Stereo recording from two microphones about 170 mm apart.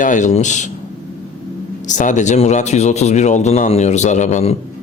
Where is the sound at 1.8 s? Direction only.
45° left (ahead or behind).